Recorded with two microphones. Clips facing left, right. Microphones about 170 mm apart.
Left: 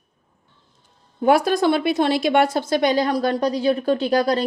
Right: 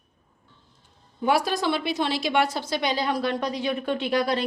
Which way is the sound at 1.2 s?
50° left (ahead or behind).